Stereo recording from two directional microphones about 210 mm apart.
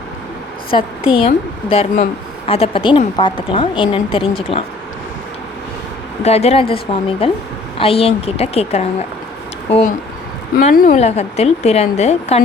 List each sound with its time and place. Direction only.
0.7 s a woman's voice: 25° left (ahead or behind)
6.2 s a woman's voice: 30° left (ahead or behind)